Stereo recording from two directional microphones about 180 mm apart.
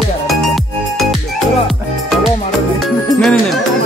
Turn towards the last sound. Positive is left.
turn(degrees=5)  # may be behind; listen again after turning